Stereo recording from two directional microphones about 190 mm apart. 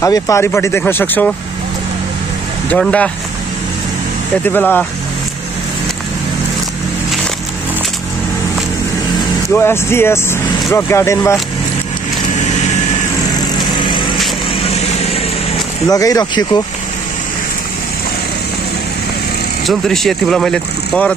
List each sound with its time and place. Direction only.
0.0 s speech: 15° left (ahead or behind)
2.7 s speech: 5° left (ahead or behind)
4.5 s speech: 10° left (ahead or behind)
9.5 s speech: 10° left (ahead or behind)
14.6 s vehicle: 30° left (ahead or behind)
15.9 s speech: 20° left (ahead or behind)
19.6 s speech: centre (ahead or behind)